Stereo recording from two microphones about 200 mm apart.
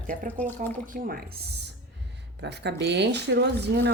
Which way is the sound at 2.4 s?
60° right (ahead or behind).